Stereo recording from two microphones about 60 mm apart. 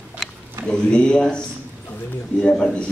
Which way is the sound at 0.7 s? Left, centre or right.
Centre.